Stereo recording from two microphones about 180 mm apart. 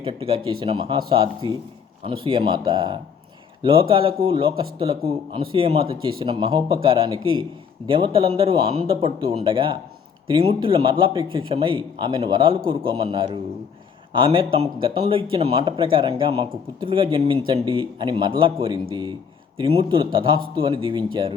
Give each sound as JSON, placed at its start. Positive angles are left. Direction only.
{"t": 0.0, "sound": "speech", "side_deg": -30}